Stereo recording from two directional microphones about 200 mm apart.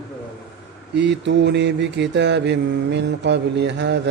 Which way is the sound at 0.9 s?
60° right (ahead or behind).